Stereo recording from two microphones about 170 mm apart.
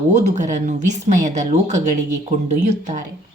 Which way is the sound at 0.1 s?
45° right (ahead or behind).